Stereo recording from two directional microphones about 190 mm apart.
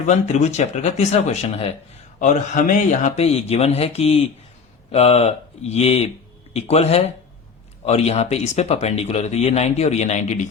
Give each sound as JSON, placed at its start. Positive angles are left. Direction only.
{"t": 0.1, "sound": "speech", "side_deg": 40}